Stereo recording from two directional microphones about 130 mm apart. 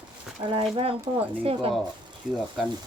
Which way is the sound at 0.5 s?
45° right (ahead or behind).